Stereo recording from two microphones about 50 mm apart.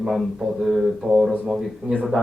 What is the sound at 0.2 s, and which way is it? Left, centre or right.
Speech, centre.